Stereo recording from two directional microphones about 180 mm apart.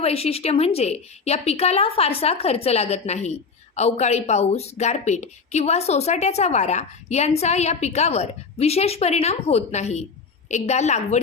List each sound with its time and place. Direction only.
0.0 s a woman's voice: 35° left (ahead or behind)